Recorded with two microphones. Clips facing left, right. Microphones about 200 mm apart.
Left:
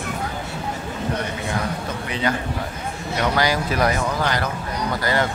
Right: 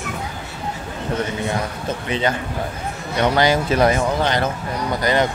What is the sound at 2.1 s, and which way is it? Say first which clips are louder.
Speech: right 2 dB; 25° right (ahead or behind).